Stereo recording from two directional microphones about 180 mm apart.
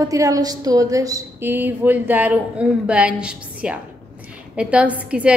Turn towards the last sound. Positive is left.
turn(degrees=-5)  # may be behind; listen again after turning